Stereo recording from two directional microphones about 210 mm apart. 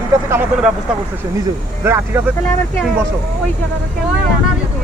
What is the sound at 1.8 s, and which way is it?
Speech, 10° right (ahead or behind).